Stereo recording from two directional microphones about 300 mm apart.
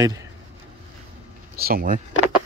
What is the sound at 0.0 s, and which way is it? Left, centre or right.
Speech, centre.